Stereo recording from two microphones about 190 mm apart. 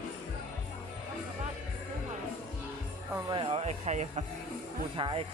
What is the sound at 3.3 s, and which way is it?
Speech, 30° right (ahead or behind).